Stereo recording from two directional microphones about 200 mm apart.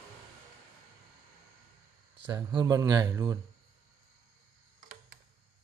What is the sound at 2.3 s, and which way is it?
Speech, 20° right (ahead or behind).